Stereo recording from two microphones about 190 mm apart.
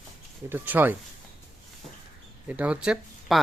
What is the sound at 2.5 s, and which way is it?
Speech, 5° right (ahead or behind).